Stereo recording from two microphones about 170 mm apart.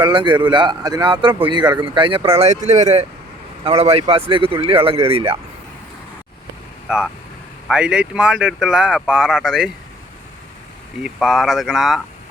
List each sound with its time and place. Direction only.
0.0 s speech: 30° right (ahead or behind)
2.4 s speech: 40° right (ahead or behind)
6.8 s speech: 5° right (ahead or behind)
11.0 s speech: centre (ahead or behind)